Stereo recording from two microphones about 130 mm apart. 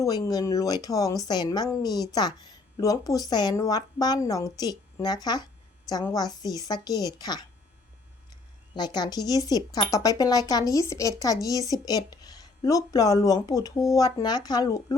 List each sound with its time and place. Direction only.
0.0 s a woman's voice: 30° left (ahead or behind)
8.7 s a woman's voice: 35° left (ahead or behind)